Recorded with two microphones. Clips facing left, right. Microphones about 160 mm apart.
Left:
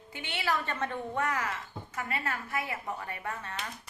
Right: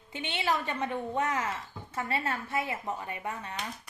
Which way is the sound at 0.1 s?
20° right (ahead or behind).